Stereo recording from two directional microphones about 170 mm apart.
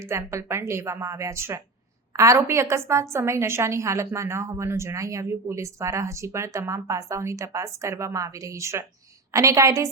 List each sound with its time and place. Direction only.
0.0 s a woman's voice: 15° right (ahead or behind)